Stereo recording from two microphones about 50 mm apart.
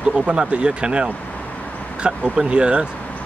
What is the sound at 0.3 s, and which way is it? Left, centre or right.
Speech, centre.